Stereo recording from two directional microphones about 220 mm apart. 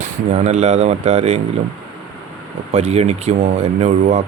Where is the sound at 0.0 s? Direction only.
30° right (ahead or behind).